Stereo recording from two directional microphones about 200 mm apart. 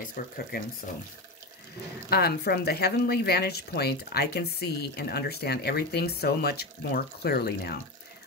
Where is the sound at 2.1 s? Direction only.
50° left (ahead or behind).